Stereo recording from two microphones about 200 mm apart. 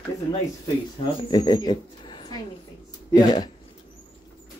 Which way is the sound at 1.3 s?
20° left (ahead or behind).